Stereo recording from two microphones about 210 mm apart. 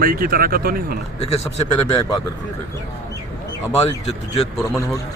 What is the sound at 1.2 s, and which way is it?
Speech, 30° left (ahead or behind).